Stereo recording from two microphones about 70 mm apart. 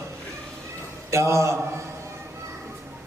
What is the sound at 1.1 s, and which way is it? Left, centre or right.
Speech, right.